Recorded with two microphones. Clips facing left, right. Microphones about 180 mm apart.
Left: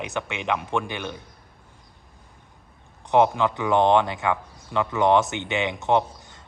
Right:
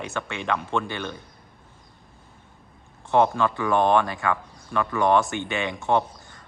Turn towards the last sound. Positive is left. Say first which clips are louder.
# left 1 dB
turn(degrees=20)  # may be behind; listen again after turning